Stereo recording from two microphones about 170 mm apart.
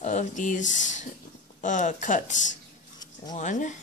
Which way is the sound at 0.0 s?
45° left (ahead or behind).